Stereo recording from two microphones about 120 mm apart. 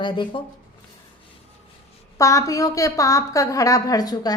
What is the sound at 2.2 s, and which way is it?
A woman's voice, 25° left (ahead or behind).